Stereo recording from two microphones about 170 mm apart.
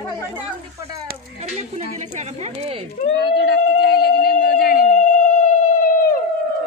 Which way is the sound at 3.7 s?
70° left (ahead or behind).